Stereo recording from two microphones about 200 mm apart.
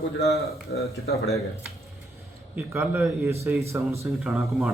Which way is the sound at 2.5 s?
10° right (ahead or behind).